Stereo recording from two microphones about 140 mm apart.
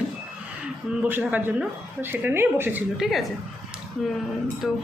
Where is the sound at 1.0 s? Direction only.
15° right (ahead or behind).